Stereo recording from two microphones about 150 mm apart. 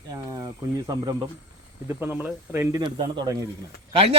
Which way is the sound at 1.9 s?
10° right (ahead or behind).